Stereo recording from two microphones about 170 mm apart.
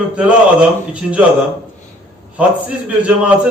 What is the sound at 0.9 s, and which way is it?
Speech, 5° right (ahead or behind).